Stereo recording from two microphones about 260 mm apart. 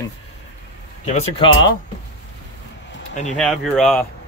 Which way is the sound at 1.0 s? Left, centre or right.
Left.